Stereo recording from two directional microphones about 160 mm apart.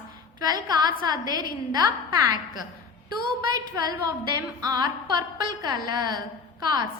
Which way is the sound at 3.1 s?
25° right (ahead or behind).